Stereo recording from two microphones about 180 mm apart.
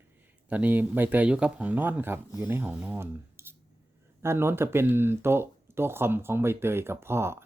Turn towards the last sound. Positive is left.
turn(degrees=-15)  # may be behind; listen again after turning